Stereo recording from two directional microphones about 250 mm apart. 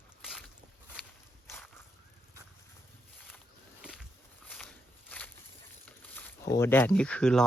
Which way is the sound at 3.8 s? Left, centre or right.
Centre.